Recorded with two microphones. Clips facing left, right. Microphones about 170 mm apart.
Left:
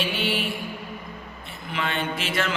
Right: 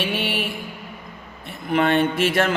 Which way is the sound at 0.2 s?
60° right (ahead or behind).